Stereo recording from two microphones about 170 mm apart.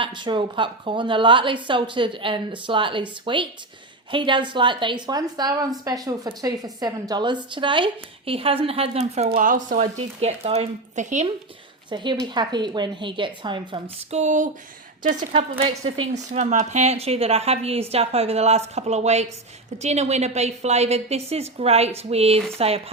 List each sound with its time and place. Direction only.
0.0 s a woman's voice: 30° right (ahead or behind)
9.3 s speech: 50° right (ahead or behind)
11.9 s a woman's voice: 25° right (ahead or behind)
14.1 s speech: 45° right (ahead or behind)
15.3 s a woman's voice: 35° right (ahead or behind)